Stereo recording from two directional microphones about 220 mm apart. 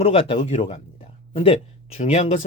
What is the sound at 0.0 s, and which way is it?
Speech, 25° left (ahead or behind).